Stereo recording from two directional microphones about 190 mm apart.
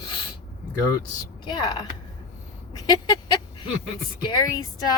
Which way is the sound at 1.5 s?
20° left (ahead or behind).